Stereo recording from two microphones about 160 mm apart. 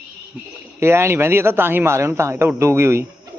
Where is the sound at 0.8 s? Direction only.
15° right (ahead or behind).